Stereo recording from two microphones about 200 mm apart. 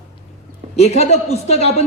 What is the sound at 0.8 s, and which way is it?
A man's voice, 30° left (ahead or behind).